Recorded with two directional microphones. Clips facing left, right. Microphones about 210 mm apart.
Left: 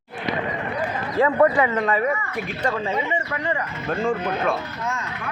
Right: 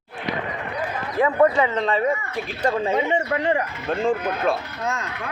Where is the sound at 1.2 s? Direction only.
15° right (ahead or behind).